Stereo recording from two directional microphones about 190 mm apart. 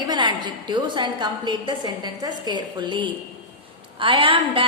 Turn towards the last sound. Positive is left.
turn(degrees=-25)  # may be behind; listen again after turning